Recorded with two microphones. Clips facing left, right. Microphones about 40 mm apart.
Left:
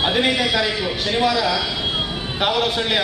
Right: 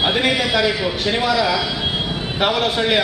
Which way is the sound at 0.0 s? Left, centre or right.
Centre.